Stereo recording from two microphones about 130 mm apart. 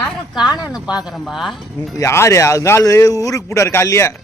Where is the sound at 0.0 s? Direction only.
5° right (ahead or behind).